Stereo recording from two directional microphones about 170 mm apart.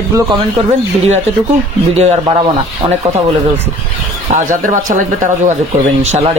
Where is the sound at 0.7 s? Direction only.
40° right (ahead or behind).